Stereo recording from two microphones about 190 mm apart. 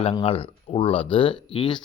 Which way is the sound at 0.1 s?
30° left (ahead or behind).